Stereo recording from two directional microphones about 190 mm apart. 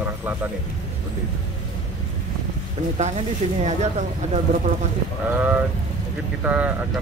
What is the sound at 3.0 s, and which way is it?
Speech, 35° right (ahead or behind).